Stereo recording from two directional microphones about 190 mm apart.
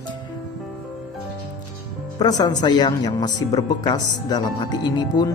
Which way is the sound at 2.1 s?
20° left (ahead or behind).